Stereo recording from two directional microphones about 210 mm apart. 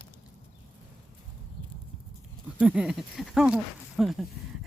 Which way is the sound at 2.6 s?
5° right (ahead or behind).